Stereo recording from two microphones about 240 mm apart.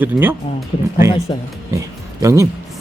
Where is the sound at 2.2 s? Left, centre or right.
Centre.